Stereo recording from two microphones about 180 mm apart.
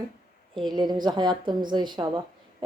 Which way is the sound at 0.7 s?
25° right (ahead or behind).